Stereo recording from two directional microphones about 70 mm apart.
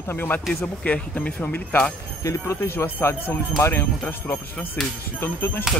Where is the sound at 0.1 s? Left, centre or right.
Left.